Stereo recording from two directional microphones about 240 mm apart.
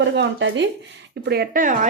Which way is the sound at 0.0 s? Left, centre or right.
Right.